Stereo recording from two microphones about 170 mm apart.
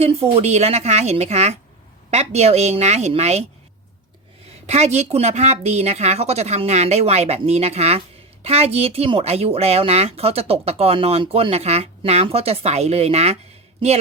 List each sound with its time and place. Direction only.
0.0 s speech: 35° right (ahead or behind)
4.6 s speech: 40° right (ahead or behind)